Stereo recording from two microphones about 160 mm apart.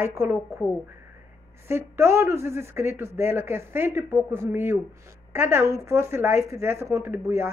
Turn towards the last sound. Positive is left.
turn(degrees=-15)  # may be behind; listen again after turning